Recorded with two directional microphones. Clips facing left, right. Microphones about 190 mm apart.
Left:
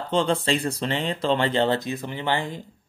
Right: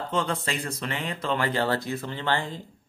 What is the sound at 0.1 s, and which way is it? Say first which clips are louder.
Speech: left 7 dB; 30° left (ahead or behind).